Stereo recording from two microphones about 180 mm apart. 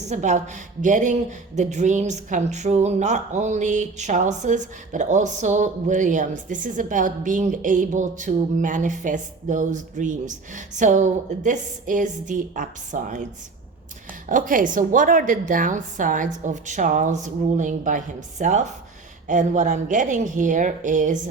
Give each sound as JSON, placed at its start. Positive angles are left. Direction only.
{"t": 0.0, "sound": "a woman's voice", "side_deg": -40}
{"t": 14.3, "sound": "a woman's voice", "side_deg": -50}